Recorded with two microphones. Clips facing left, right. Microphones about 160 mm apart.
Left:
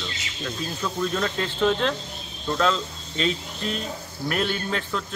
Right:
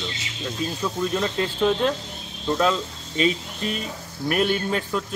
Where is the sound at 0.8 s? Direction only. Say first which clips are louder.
Right 1 dB; 15° right (ahead or behind).